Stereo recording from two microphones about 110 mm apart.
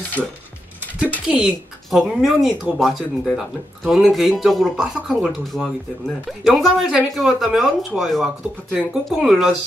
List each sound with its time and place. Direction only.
0.2 s speech: 5° right (ahead or behind)